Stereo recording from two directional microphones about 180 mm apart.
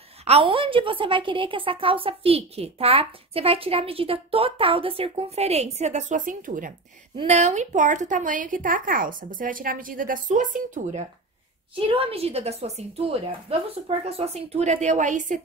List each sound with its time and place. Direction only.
0.2 s a woman's voice: 30° right (ahead or behind)
11.9 s a woman's voice: 30° right (ahead or behind)